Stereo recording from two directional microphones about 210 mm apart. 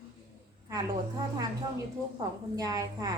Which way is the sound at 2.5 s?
15° right (ahead or behind).